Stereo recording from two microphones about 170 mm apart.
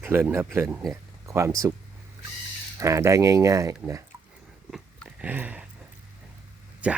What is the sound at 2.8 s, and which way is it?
Speech, 20° right (ahead or behind).